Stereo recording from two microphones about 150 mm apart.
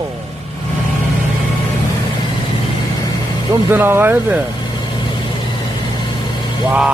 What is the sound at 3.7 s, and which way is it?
Speech, 15° right (ahead or behind).